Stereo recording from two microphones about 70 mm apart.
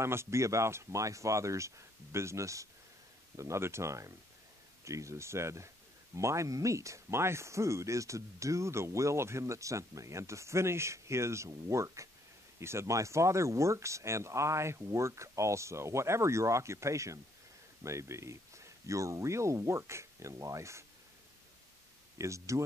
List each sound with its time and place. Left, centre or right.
0.0 s speech: right
22.2 s speech: right